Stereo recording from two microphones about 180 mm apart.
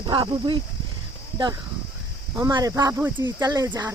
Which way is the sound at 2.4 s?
20° right (ahead or behind).